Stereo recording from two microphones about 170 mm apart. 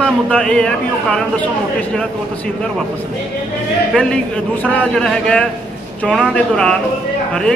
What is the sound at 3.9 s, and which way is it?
A man's voice, 5° left (ahead or behind).